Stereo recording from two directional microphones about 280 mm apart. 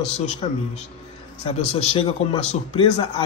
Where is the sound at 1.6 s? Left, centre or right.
Left.